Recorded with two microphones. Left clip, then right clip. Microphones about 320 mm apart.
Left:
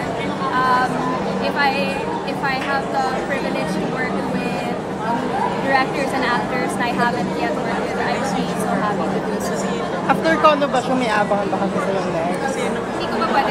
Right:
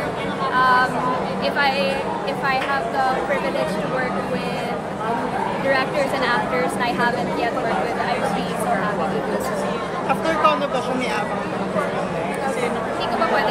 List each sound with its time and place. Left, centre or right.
5.7 s speech: centre
10.0 s speech: left